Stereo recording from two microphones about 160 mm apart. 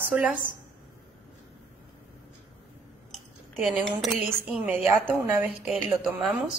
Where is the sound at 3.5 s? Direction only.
5° right (ahead or behind).